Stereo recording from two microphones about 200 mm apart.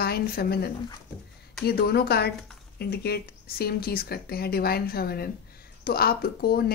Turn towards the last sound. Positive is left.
turn(degrees=50)  # may be behind; listen again after turning